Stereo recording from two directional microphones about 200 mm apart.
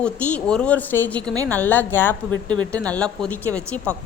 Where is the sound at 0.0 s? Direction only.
5° left (ahead or behind).